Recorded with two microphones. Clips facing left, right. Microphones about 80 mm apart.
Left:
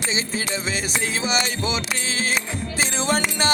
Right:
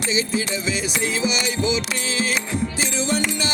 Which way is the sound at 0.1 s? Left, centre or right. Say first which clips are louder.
Right 5 dB; left.